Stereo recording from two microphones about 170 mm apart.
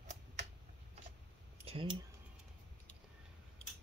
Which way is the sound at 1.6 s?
35° right (ahead or behind).